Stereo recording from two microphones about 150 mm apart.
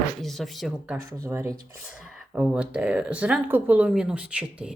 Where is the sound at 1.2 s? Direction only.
20° right (ahead or behind).